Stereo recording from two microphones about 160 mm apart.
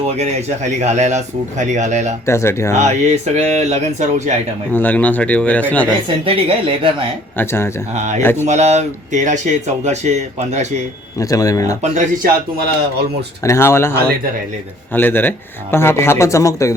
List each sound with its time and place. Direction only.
0.2 s speech: 45° right (ahead or behind)
2.2 s speech: 15° left (ahead or behind)
2.7 s speech: 45° right (ahead or behind)
4.7 s speech: 10° left (ahead or behind)
6.2 s a woman's voice: 35° right (ahead or behind)
7.3 s speech: 15° left (ahead or behind)
7.9 s speech: 45° right (ahead or behind)
8.2 s speech: 15° left (ahead or behind)
8.4 s speech: 45° right (ahead or behind)
11.2 s speech: 20° left (ahead or behind)
11.8 s speech: 50° right (ahead or behind)
13.4 s speech: 15° left (ahead or behind)
14.9 s speech: 10° left (ahead or behind)